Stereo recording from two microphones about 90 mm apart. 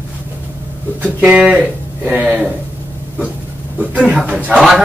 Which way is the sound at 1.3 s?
15° right (ahead or behind).